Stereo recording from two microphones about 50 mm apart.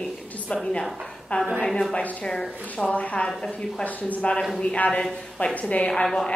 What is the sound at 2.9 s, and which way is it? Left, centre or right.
Speech, left.